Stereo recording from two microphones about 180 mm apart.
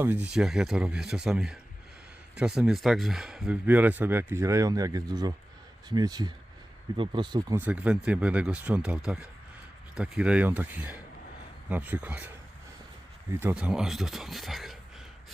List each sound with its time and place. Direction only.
0.0 s speech: 10° right (ahead or behind)
7.6 s speech: 10° right (ahead or behind)
13.4 s speech: 5° right (ahead or behind)